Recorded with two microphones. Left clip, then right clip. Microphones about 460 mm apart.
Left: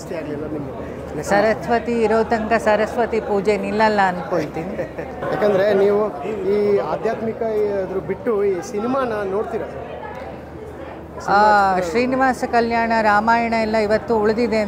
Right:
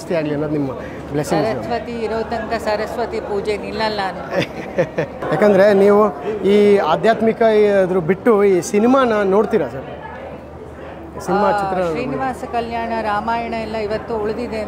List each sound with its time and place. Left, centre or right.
1.5 s a woman's voice: left
4.3 s a man's voice: right
5.3 s speech: right
11.3 s a woman's voice: left